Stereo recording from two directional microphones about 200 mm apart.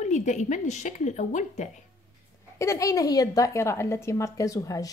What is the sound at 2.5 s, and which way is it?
A woman's voice, 15° left (ahead or behind).